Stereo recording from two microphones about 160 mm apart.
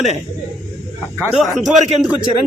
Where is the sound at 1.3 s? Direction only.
Centre (ahead or behind).